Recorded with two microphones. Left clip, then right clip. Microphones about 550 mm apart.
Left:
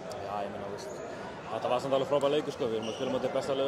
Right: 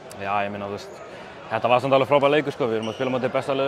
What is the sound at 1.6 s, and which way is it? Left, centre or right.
Speech, right.